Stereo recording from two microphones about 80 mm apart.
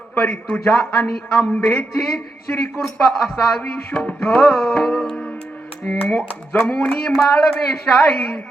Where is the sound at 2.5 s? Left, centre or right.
Left.